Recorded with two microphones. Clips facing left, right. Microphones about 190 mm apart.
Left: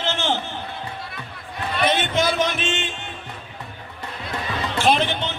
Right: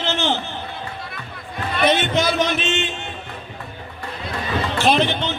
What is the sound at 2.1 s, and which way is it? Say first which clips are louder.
Speech: right 2 dB; 50° left (ahead or behind).